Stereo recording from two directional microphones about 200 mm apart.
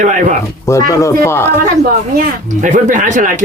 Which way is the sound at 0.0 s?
40° right (ahead or behind).